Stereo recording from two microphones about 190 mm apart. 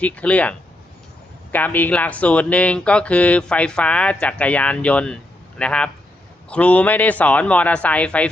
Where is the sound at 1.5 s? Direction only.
10° left (ahead or behind).